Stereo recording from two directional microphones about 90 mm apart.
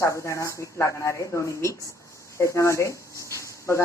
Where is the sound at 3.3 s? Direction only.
35° left (ahead or behind).